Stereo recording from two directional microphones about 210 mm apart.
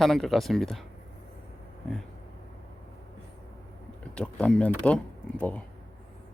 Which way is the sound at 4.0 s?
5° left (ahead or behind).